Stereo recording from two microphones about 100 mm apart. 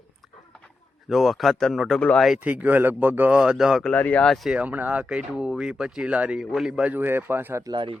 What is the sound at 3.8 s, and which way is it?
Speech, 15° left (ahead or behind).